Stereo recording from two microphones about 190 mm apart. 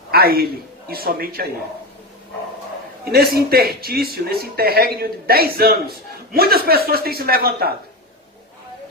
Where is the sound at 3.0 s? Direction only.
55° right (ahead or behind).